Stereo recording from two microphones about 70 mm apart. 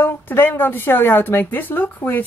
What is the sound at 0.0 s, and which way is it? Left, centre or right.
A woman's voice, left.